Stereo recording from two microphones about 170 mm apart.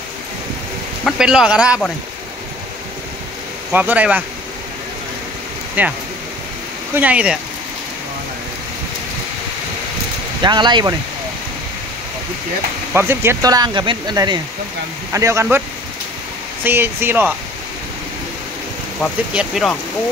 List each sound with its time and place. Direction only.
1.0 s speech: 5° right (ahead or behind)
3.7 s speech: 10° right (ahead or behind)
5.8 s speech: 10° right (ahead or behind)
7.0 s speech: 5° right (ahead or behind)
10.4 s speech: 25° right (ahead or behind)
12.9 s speech: 15° right (ahead or behind)
16.6 s speech: 15° right (ahead or behind)
19.3 s speech: centre (ahead or behind)